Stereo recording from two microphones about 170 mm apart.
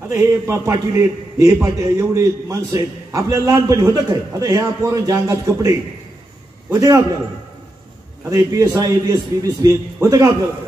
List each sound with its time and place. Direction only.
0.1 s a man's voice: 15° right (ahead or behind)
8.2 s a man's voice: 20° right (ahead or behind)